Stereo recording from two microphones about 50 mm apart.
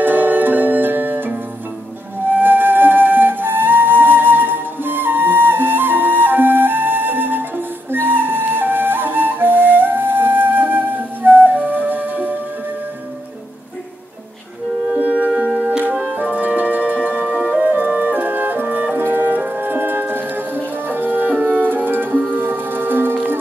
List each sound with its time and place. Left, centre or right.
0.0 s music: right
2.2 s flute: right
15.0 s music: right
16.3 s music: right